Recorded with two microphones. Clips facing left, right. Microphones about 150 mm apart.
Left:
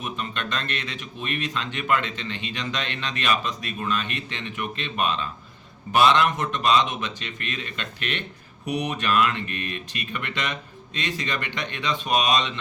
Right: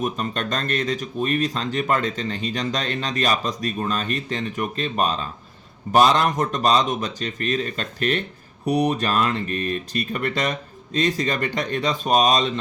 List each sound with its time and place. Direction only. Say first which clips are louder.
0.0 s speech: right 6 dB; 40° right (ahead or behind)